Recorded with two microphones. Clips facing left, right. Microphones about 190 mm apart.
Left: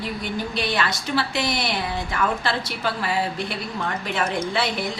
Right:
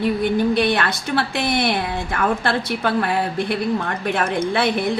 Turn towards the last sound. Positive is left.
turn(degrees=-55)  # may be behind; listen again after turning